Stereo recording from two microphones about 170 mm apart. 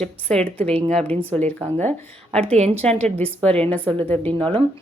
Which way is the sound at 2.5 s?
40° right (ahead or behind).